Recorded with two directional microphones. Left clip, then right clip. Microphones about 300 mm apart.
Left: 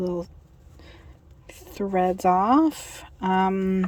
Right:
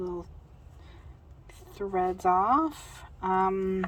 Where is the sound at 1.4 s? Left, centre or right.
Left.